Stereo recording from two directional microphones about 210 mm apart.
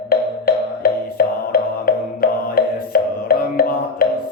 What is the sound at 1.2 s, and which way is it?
Music, 45° left (ahead or behind).